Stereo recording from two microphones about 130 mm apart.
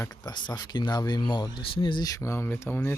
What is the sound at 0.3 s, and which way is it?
Speech, 35° left (ahead or behind).